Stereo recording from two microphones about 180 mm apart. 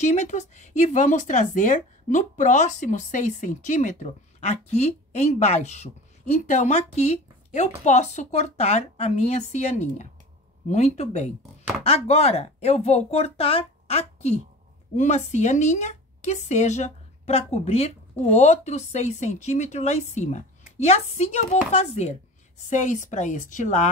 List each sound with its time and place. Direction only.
0.0 s a woman's voice: 40° left (ahead or behind)